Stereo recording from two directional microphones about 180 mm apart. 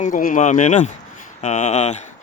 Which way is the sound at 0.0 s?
50° left (ahead or behind).